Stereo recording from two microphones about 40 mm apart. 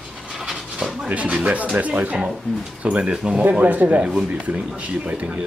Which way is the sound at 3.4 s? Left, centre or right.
Right.